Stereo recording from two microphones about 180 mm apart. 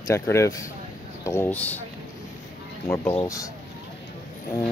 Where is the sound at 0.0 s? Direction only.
15° left (ahead or behind).